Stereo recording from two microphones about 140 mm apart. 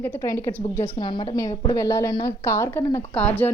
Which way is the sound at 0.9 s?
35° left (ahead or behind).